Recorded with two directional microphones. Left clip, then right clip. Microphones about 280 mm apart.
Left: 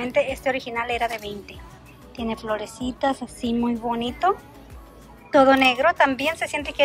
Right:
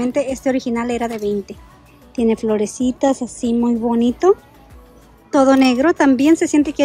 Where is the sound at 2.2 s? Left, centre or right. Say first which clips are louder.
Right 9 dB; right.